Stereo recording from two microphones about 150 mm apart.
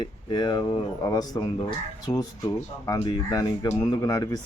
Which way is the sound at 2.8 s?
25° left (ahead or behind).